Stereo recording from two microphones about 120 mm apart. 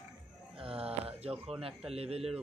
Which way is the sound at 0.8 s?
55° right (ahead or behind).